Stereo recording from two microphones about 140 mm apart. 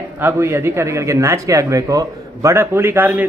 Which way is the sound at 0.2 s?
15° right (ahead or behind).